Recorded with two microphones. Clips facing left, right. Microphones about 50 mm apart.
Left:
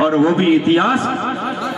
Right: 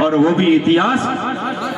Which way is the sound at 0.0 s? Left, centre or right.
Centre.